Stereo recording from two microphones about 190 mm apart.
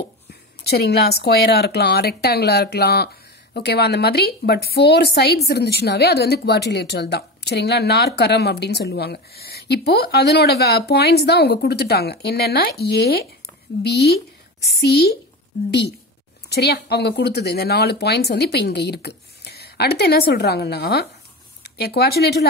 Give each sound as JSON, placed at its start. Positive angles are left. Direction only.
{"t": 0.3, "sound": "a woman's voice", "side_deg": 60}
{"t": 16.4, "sound": "a woman's voice", "side_deg": 60}